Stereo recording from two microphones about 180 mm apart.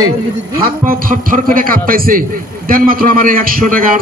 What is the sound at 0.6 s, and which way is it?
A man's voice, 55° right (ahead or behind).